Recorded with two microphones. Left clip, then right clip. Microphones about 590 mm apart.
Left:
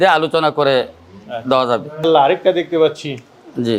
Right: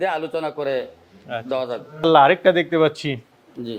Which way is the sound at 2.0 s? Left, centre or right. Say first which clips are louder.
Even; right.